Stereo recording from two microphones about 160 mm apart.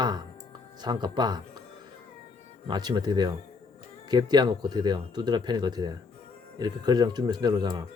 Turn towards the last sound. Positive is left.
turn(degrees=-25)  # may be behind; listen again after turning